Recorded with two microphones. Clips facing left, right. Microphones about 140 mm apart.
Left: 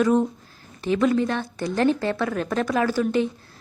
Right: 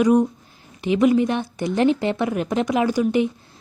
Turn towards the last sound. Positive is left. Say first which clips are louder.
# right 2 dB
turn(degrees=-15)  # may be behind; listen again after turning